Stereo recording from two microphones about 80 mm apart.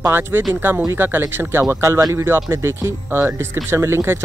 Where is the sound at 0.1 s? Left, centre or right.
Right.